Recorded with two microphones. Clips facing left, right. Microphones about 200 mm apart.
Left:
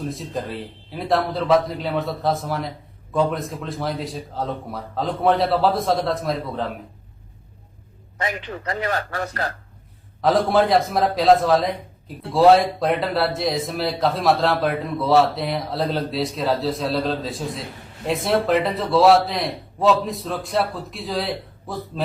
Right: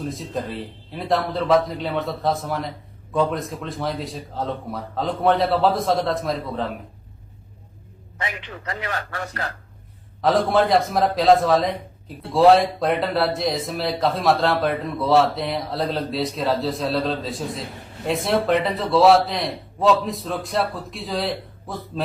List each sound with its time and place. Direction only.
0.0 s a man's voice: centre (ahead or behind)
8.2 s speech: 40° left (ahead or behind)
10.2 s a man's voice: centre (ahead or behind)